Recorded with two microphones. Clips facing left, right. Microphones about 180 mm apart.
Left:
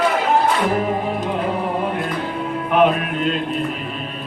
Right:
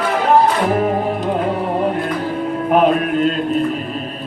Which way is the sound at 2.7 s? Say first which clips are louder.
Right 2 dB; 40° right (ahead or behind).